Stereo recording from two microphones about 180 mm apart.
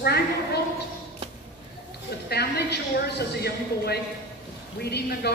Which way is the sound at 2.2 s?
65° left (ahead or behind).